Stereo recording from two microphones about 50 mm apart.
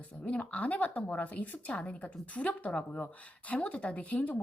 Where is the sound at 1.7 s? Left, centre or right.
Left.